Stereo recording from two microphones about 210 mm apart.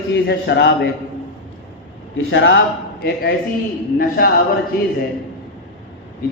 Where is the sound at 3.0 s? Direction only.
50° left (ahead or behind).